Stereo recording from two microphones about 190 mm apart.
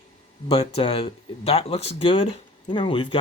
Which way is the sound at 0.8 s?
30° left (ahead or behind).